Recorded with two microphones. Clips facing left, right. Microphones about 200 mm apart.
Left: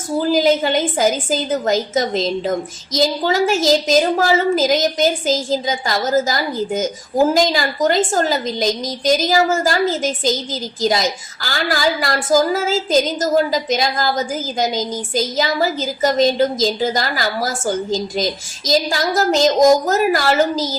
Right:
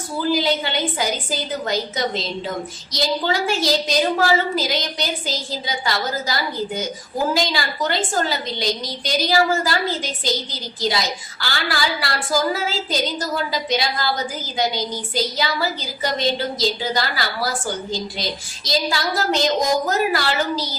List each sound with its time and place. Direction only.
0.3 s a woman's voice: 45° left (ahead or behind)